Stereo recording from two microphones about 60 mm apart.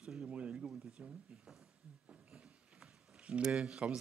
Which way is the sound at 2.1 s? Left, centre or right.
Centre.